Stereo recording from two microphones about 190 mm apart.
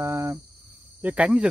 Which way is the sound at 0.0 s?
15° right (ahead or behind).